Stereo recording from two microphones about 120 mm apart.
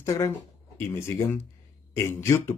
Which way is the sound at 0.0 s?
25° left (ahead or behind).